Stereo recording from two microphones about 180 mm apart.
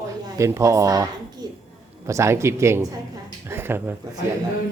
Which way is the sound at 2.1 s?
15° right (ahead or behind).